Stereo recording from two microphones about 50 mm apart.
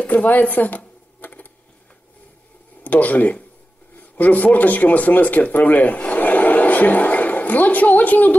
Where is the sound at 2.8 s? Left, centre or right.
Left.